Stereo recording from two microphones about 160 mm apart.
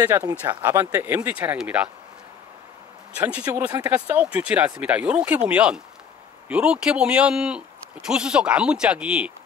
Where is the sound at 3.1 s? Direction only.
10° right (ahead or behind).